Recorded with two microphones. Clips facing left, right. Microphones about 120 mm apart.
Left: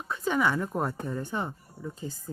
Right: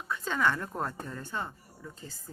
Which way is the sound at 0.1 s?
15° left (ahead or behind).